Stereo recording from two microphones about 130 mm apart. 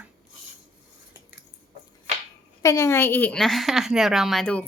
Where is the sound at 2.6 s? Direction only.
25° left (ahead or behind).